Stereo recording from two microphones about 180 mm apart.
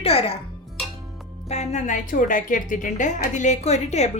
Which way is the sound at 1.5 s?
40° left (ahead or behind).